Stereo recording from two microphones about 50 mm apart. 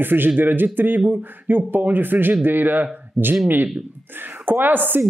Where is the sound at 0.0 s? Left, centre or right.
Right.